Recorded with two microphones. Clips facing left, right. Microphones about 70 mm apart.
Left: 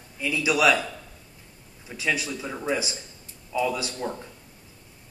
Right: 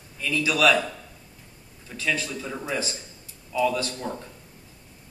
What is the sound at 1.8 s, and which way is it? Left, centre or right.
A man's voice, centre.